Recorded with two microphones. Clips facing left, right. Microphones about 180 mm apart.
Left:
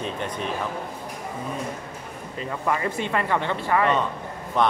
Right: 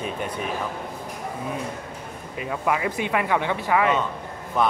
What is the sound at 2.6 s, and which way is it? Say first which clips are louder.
A man's voice: right 1 dB; 10° right (ahead or behind).